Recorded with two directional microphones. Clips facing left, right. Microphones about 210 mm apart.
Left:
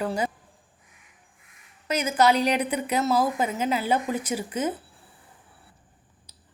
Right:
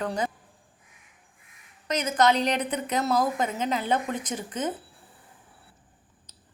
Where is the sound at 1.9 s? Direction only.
10° left (ahead or behind).